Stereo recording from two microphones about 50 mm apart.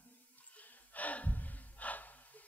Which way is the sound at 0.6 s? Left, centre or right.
Left.